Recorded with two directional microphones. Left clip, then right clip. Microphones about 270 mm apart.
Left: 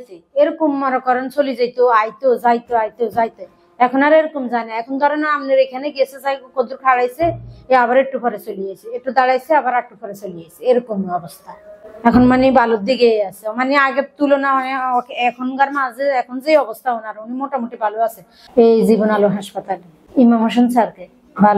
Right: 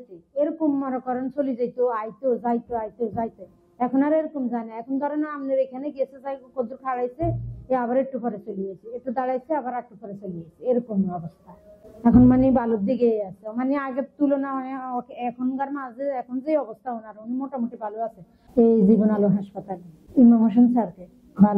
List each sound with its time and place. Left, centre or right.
0.4 s a woman's voice: centre